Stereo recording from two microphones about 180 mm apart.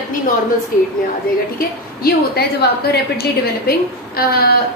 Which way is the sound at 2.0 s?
60° left (ahead or behind).